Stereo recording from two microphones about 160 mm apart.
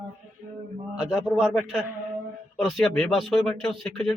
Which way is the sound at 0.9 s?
5° right (ahead or behind).